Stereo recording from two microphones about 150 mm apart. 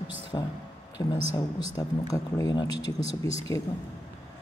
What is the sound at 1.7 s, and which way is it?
Speech, 20° left (ahead or behind).